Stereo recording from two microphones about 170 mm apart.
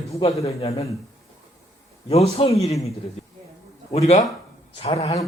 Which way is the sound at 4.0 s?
40° left (ahead or behind).